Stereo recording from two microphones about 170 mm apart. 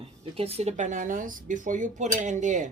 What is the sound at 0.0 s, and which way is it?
Speech, 35° right (ahead or behind).